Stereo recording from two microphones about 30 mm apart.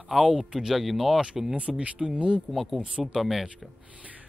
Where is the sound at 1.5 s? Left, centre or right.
Right.